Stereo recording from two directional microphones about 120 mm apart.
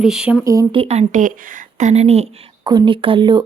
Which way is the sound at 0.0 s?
5° right (ahead or behind).